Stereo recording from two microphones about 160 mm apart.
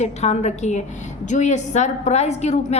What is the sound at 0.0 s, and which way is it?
A woman's voice, 45° left (ahead or behind).